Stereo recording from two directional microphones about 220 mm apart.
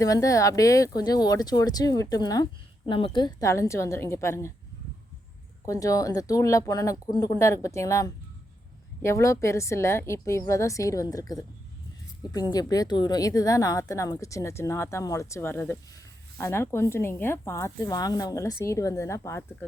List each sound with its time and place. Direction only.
0.0 s a woman's voice: 15° left (ahead or behind)
5.6 s a woman's voice: 15° left (ahead or behind)